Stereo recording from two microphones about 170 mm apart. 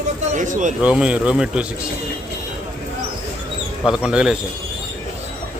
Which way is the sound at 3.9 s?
5° right (ahead or behind).